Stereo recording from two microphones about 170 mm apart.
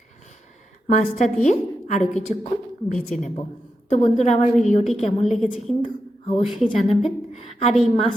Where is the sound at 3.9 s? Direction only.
40° left (ahead or behind).